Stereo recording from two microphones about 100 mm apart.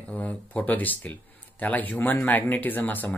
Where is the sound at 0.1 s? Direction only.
15° left (ahead or behind).